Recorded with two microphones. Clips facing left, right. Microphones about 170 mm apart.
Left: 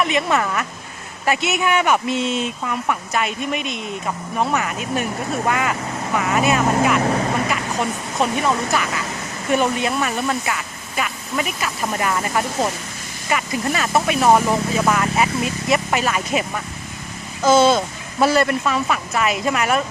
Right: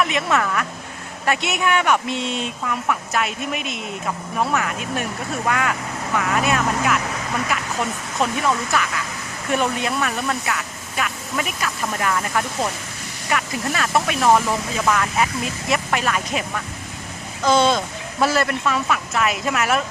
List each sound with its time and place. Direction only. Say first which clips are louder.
0.0 s speech: left 1 dB; centre (ahead or behind)
7.0 s vehicle: left 9 dB; 40° left (ahead or behind)
7.5 s speech: left 2 dB; centre (ahead or behind)
14.3 s speech: left 2 dB; 15° left (ahead or behind)